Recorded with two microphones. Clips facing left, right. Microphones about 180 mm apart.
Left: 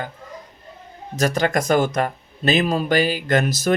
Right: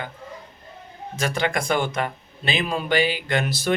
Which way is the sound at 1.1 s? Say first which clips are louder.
Left 5 dB; 40° left (ahead or behind).